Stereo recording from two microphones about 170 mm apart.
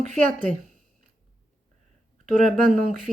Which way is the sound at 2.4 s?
55° right (ahead or behind).